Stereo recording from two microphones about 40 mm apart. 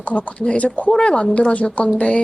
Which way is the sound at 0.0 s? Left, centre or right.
Left.